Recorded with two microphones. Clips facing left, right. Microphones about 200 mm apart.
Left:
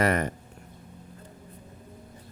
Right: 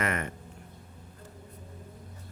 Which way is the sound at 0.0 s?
35° left (ahead or behind).